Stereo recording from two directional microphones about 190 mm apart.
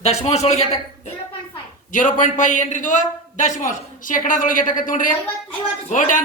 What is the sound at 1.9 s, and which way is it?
A man's voice, 45° left (ahead or behind).